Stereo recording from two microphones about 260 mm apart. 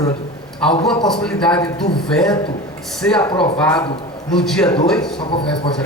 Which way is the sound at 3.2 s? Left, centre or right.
Centre.